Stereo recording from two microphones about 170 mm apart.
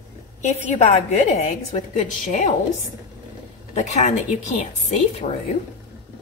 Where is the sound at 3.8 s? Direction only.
45° left (ahead or behind).